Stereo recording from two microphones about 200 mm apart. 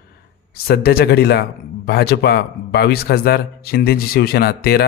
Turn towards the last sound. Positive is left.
turn(degrees=50)  # may be behind; listen again after turning